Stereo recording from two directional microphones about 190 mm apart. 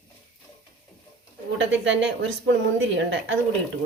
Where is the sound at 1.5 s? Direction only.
75° right (ahead or behind).